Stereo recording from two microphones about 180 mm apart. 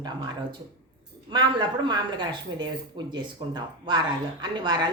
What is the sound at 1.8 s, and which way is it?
A woman's voice, 25° right (ahead or behind).